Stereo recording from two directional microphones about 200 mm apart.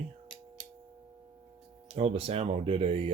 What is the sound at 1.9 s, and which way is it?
Speech, 30° right (ahead or behind).